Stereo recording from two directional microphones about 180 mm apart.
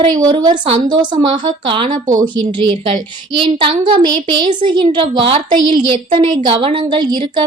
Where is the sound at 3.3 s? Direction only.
25° right (ahead or behind).